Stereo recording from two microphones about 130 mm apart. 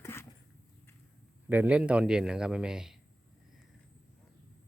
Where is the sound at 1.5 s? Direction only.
10° right (ahead or behind).